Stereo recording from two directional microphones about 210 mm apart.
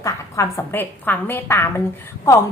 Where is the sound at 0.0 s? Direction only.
15° left (ahead or behind).